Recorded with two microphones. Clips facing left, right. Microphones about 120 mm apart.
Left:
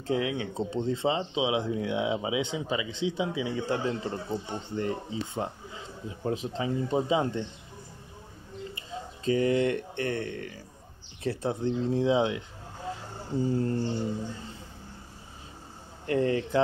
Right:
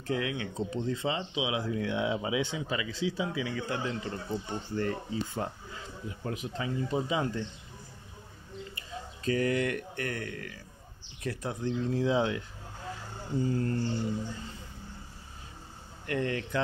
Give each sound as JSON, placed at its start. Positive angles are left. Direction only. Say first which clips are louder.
{"t": 0.0, "sound": "speech", "louder": "left 4 dB", "side_deg": 25}
{"t": 8.7, "sound": "speech", "louder": "left 3 dB", "side_deg": 25}
{"t": 16.1, "sound": "speech", "louder": "left 6 dB", "side_deg": 30}